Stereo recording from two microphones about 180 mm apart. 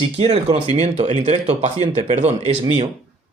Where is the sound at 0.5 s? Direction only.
35° right (ahead or behind).